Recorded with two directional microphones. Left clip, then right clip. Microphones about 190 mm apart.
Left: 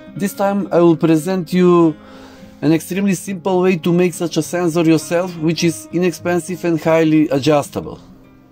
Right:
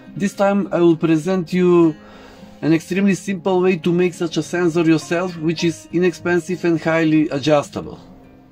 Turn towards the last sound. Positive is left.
turn(degrees=45)  # may be behind; listen again after turning